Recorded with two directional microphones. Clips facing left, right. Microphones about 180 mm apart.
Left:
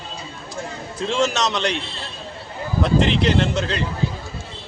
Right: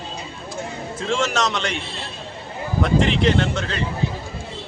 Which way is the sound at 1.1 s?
Centre (ahead or behind).